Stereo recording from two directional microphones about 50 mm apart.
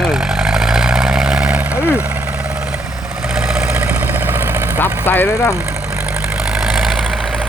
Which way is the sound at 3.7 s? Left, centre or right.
Right.